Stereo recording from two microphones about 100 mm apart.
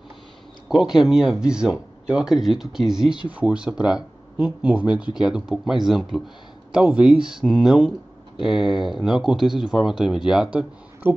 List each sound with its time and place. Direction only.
0.7 s speech: 5° right (ahead or behind)
11.0 s speech: 20° right (ahead or behind)